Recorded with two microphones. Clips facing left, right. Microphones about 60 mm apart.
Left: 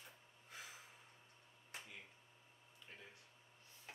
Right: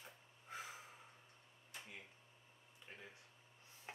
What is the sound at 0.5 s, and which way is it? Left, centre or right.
Snort, right.